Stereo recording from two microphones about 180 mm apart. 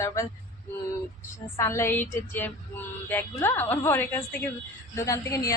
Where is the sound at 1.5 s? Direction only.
15° left (ahead or behind).